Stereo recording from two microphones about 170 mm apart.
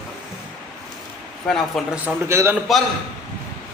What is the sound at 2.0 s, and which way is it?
Speech, 15° right (ahead or behind).